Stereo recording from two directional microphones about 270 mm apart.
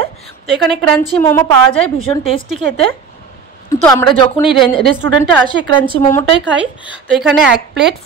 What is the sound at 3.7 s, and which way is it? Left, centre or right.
A woman's voice, centre.